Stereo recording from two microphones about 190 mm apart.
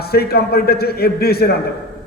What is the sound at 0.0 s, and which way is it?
A man's voice, 55° left (ahead or behind).